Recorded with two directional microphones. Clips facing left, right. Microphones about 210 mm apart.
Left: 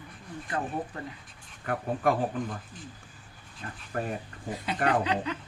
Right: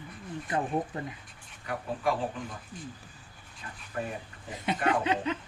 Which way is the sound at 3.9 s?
50° left (ahead or behind).